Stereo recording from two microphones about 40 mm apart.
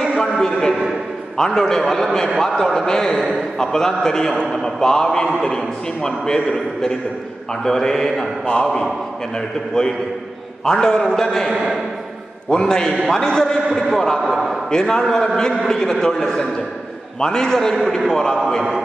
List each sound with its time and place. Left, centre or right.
0.0 s music: centre
0.4 s a sound: centre
1.3 s a man's voice: centre
9.8 s a man's voice: centre
11.5 s a man's voice: centre
12.4 s a man's voice: centre
14.2 s a man's voice: centre
14.7 s a man's voice: centre